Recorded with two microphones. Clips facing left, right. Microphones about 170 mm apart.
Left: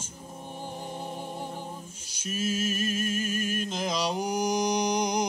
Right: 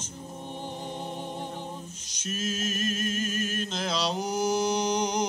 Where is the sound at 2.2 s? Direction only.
10° left (ahead or behind).